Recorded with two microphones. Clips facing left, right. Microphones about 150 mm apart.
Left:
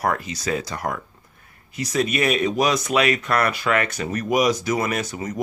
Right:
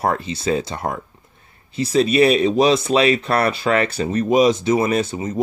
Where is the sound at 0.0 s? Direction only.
25° right (ahead or behind).